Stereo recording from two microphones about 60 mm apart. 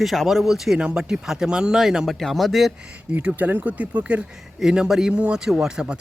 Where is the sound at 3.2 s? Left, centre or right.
Centre.